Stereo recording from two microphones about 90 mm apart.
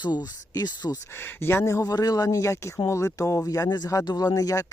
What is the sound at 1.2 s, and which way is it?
Speech, 25° left (ahead or behind).